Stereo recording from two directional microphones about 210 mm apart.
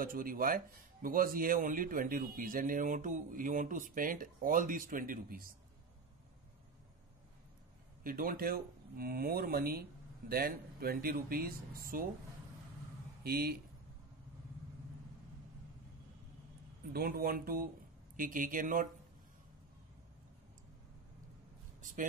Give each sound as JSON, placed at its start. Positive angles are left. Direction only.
{"t": 0.0, "sound": "speech", "side_deg": -45}
{"t": 8.0, "sound": "speech", "side_deg": -40}
{"t": 13.2, "sound": "speech", "side_deg": -45}
{"t": 16.9, "sound": "speech", "side_deg": -45}